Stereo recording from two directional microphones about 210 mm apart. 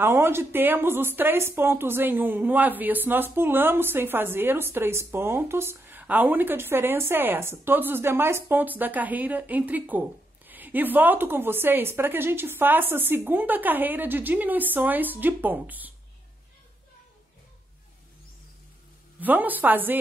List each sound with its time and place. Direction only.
0.0 s speech: 10° right (ahead or behind)
19.1 s speech: 10° right (ahead or behind)